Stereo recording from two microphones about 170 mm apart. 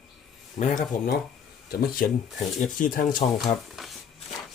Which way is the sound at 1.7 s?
60° left (ahead or behind).